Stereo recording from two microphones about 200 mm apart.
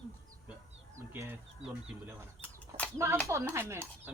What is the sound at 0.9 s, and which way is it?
Chicken, 10° right (ahead or behind).